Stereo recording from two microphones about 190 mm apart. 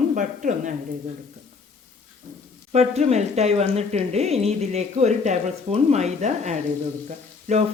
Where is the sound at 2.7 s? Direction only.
35° right (ahead or behind).